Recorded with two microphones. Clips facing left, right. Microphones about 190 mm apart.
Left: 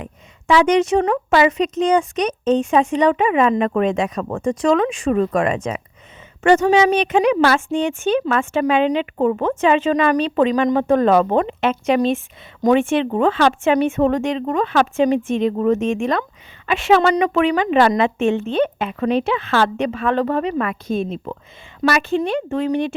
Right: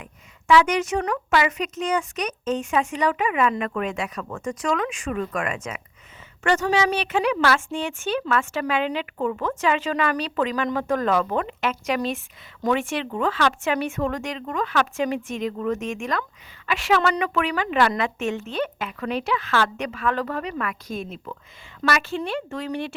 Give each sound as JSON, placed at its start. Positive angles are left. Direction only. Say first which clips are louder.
{"t": 0.0, "sound": "a woman's voice", "louder": "left 9 dB", "side_deg": 25}
{"t": 6.4, "sound": "a woman's voice", "louder": "left 8 dB", "side_deg": 20}